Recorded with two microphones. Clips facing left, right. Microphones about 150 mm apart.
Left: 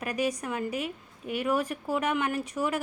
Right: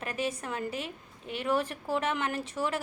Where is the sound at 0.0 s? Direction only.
15° left (ahead or behind).